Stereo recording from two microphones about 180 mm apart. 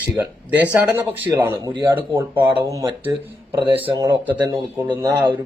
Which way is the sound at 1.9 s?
15° right (ahead or behind).